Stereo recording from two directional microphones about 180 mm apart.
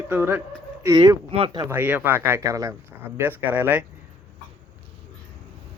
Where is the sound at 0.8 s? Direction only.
20° right (ahead or behind).